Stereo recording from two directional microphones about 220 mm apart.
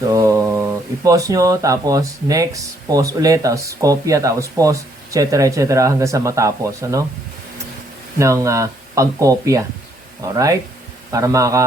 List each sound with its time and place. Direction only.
0.1 s speech: 15° right (ahead or behind)
8.2 s speech: 15° right (ahead or behind)